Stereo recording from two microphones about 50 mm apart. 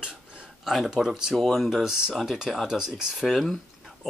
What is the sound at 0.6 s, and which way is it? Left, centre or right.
Speech, centre.